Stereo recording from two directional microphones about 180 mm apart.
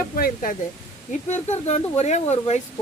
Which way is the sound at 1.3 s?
40° left (ahead or behind).